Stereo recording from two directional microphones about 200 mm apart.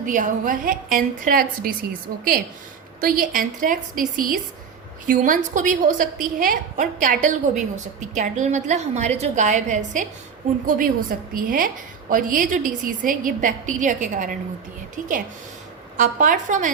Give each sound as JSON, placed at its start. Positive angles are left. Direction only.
{"t": 0.0, "sound": "a woman's voice", "side_deg": -40}
{"t": 3.0, "sound": "a woman's voice", "side_deg": -45}
{"t": 16.0, "sound": "a woman's voice", "side_deg": -40}